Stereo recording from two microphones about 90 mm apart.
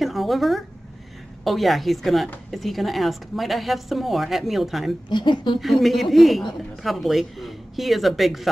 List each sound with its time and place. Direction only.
0.0 s a sound: centre (ahead or behind)
1.4 s a woman's voice: centre (ahead or behind)
5.1 s speech: 60° left (ahead or behind)
5.6 s a woman's voice: centre (ahead or behind)